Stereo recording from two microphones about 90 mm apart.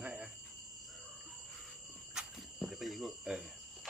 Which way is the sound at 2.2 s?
10° right (ahead or behind).